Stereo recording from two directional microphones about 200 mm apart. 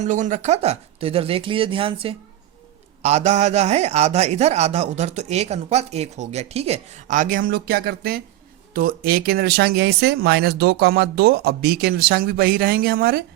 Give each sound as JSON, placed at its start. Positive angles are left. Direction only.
{"t": 0.0, "sound": "a man's voice", "side_deg": -40}